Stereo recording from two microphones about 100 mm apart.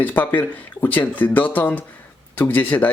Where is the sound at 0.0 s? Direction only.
20° left (ahead or behind).